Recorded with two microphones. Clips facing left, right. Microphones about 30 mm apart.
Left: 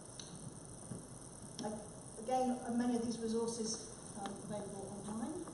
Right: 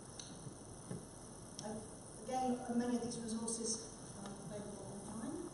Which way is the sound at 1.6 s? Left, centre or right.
Centre.